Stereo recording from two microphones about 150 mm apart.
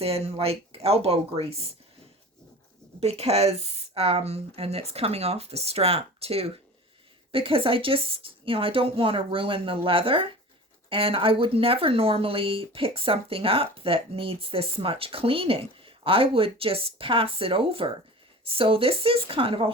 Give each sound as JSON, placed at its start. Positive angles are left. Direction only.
{"t": 0.0, "sound": "speech", "side_deg": -45}
{"t": 3.0, "sound": "speech", "side_deg": -45}